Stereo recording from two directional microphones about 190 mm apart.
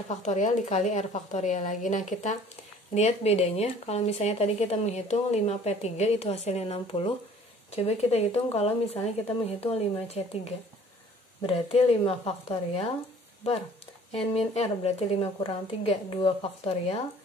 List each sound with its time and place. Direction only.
0.1 s speech: 40° left (ahead or behind)
14.1 s speech: 35° left (ahead or behind)